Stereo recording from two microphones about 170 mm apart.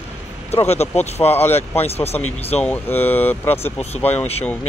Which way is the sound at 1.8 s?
35° left (ahead or behind).